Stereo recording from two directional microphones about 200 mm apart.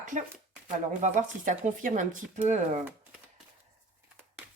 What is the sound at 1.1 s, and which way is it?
Speech, 40° right (ahead or behind).